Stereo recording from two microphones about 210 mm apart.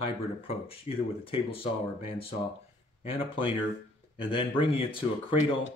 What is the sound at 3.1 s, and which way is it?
Speech, 25° left (ahead or behind).